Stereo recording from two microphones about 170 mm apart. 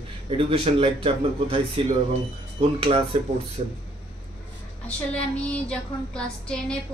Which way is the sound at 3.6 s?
45° right (ahead or behind).